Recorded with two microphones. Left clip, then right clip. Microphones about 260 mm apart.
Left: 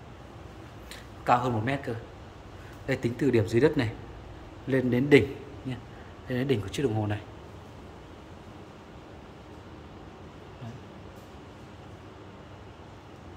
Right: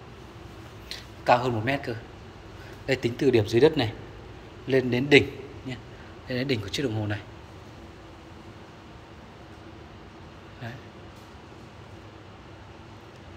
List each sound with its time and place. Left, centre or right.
0.8 s a sound: centre
2.9 s speech: centre
6.2 s speech: centre